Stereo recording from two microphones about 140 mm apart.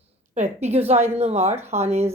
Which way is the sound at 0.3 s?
50° right (ahead or behind).